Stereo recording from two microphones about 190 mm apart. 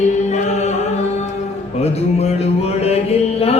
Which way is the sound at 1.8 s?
35° left (ahead or behind).